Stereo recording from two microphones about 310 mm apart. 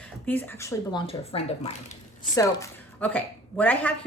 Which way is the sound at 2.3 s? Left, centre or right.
Centre.